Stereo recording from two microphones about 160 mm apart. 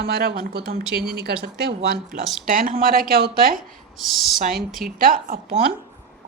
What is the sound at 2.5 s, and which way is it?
Speech, 60° right (ahead or behind).